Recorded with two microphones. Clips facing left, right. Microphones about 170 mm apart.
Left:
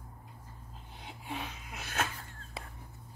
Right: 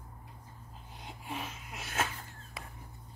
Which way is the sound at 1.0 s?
Centre (ahead or behind).